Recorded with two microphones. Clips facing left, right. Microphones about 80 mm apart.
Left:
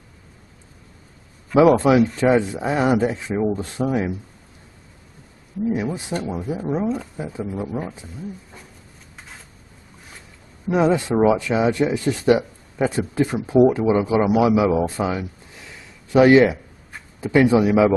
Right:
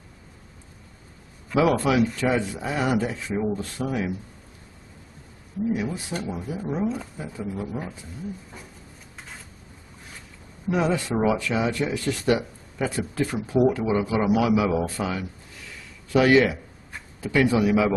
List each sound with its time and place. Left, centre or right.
1.5 s speech: left
6.2 s speech: left
10.7 s speech: left